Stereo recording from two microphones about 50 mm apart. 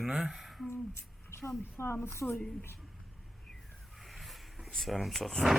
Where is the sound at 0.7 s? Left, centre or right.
Left.